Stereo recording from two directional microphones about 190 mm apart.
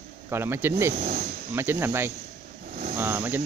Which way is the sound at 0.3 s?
10° right (ahead or behind).